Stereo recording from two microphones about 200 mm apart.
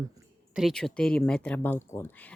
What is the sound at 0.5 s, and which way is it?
Speech, centre (ahead or behind).